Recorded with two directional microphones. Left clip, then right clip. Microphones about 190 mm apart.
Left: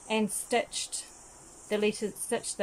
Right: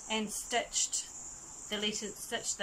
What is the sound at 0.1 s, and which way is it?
Speech, 20° left (ahead or behind).